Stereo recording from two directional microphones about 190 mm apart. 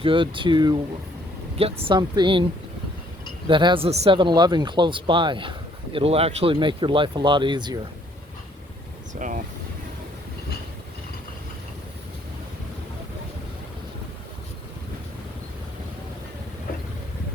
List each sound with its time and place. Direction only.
0.0 s speech: 25° right (ahead or behind)
3.4 s speech: 25° right (ahead or behind)
9.1 s vehicle: 40° right (ahead or behind)